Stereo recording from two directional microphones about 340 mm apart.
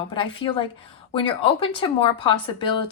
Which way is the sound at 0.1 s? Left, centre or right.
Centre.